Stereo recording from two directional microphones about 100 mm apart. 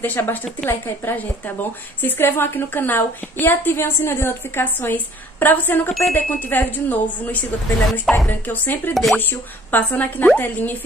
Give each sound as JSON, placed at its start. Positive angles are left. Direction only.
{"t": 0.0, "sound": "a woman's voice", "side_deg": 20}